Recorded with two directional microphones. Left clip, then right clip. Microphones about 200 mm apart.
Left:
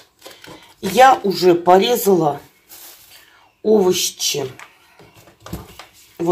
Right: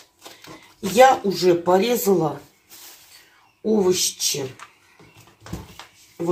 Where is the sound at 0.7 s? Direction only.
25° left (ahead or behind).